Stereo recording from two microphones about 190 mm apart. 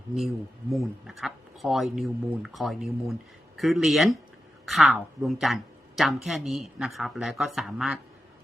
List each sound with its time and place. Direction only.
0.7 s a woman's voice: centre (ahead or behind)